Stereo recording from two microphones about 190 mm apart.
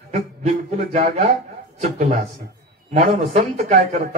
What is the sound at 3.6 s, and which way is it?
Speech, 40° right (ahead or behind).